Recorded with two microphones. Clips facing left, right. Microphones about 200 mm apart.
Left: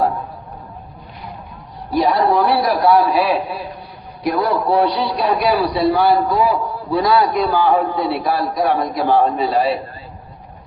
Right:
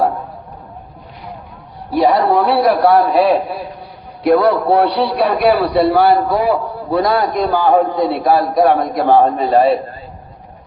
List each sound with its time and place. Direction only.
1.9 s a man's voice: 65° right (ahead or behind)